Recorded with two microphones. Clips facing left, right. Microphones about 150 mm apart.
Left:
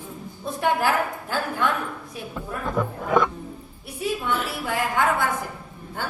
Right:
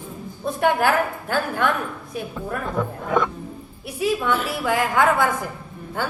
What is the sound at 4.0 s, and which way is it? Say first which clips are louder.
A woman's voice: right 4 dB; 90° right.